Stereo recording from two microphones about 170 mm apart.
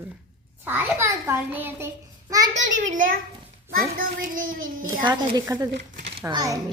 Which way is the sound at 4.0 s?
55° right (ahead or behind).